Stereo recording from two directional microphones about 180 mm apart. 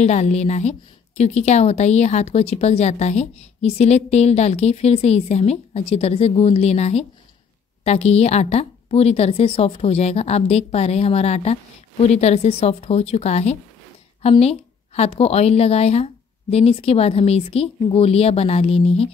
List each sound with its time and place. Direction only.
0.0 s a woman's voice: 40° left (ahead or behind)